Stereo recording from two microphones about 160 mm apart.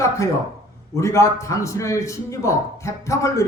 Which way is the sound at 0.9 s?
20° left (ahead or behind).